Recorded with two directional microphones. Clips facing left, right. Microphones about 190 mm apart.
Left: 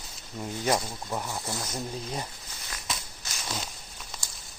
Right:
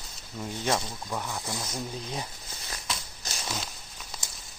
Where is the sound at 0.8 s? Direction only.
15° left (ahead or behind).